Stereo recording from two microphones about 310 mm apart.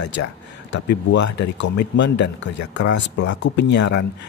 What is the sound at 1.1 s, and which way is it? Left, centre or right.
Speech, left.